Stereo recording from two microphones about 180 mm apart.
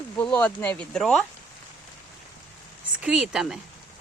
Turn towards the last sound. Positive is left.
turn(degrees=-5)  # may be behind; listen again after turning